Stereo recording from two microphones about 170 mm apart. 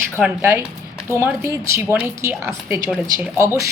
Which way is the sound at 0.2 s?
10° right (ahead or behind).